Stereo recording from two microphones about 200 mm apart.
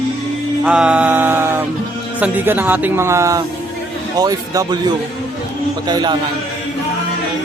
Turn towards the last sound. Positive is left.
turn(degrees=-20)  # may be behind; listen again after turning